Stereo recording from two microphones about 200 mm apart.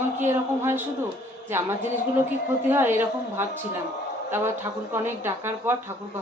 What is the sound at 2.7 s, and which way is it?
Speech, 10° right (ahead or behind).